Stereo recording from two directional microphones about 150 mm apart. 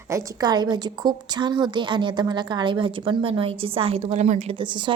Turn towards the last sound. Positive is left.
turn(degrees=-30)  # may be behind; listen again after turning